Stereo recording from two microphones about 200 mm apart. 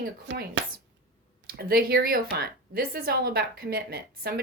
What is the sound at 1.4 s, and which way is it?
Speech, 50° right (ahead or behind).